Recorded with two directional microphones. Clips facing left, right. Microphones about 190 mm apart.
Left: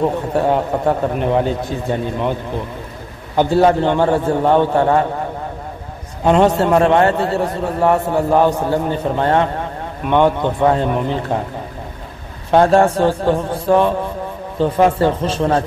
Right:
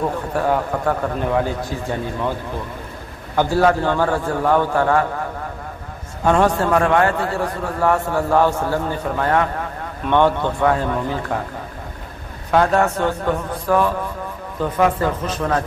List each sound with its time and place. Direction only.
0.0 s a man's voice: 25° left (ahead or behind)
3.3 s a man's voice: 20° left (ahead or behind)
6.2 s a man's voice: 20° left (ahead or behind)
10.0 s a man's voice: 15° left (ahead or behind)
12.4 s a man's voice: 30° left (ahead or behind)